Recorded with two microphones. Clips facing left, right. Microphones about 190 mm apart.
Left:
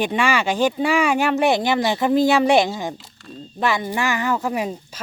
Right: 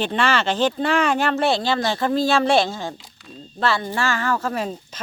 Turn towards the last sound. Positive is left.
turn(degrees=10)  # may be behind; listen again after turning